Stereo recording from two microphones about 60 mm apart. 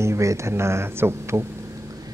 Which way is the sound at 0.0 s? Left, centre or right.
Right.